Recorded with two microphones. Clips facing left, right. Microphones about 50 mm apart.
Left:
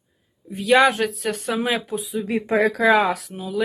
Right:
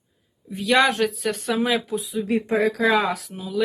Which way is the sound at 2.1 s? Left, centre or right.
Left.